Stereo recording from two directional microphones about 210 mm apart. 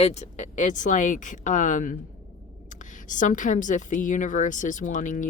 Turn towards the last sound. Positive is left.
turn(degrees=35)  # may be behind; listen again after turning